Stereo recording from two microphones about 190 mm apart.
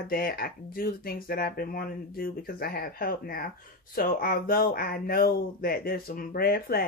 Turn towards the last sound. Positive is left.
turn(degrees=50)  # may be behind; listen again after turning